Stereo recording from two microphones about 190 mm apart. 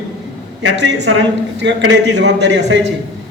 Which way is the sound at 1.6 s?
65° right (ahead or behind).